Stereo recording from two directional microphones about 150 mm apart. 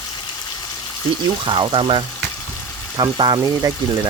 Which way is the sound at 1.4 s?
35° right (ahead or behind).